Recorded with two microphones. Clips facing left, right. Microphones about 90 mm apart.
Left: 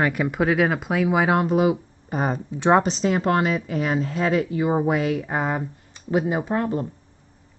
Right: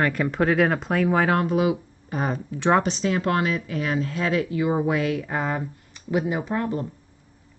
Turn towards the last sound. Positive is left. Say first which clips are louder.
# left 2 dB
turn(degrees=25)  # may be behind; listen again after turning